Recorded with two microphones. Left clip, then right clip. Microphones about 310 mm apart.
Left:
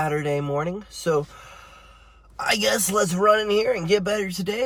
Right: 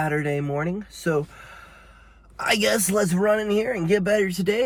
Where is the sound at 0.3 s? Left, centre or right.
Left.